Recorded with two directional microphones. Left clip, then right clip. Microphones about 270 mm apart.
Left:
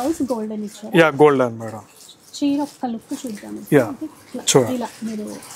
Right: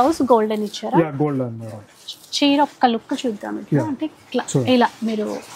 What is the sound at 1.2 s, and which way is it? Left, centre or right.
Speech, centre.